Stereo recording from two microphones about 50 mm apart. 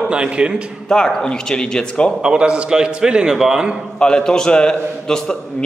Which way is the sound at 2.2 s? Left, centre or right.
Centre.